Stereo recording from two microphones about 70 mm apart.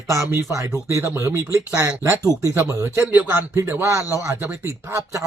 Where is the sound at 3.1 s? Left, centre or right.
Right.